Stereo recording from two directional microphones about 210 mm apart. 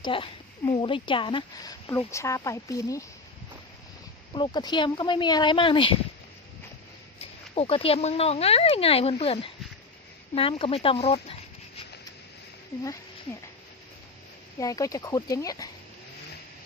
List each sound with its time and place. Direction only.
0.0 s speech: 25° left (ahead or behind)
4.3 s speech: 20° left (ahead or behind)
7.2 s speech: 30° left (ahead or behind)
14.6 s speech: 15° left (ahead or behind)